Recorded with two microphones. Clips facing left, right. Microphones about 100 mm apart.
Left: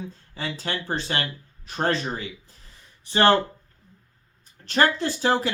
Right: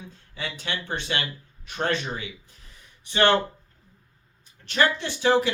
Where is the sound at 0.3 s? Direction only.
35° left (ahead or behind).